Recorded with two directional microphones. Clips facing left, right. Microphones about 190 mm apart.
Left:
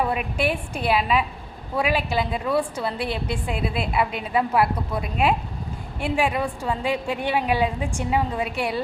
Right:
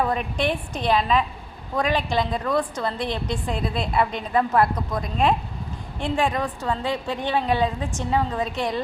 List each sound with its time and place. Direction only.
0.0 s a woman's voice: 10° left (ahead or behind)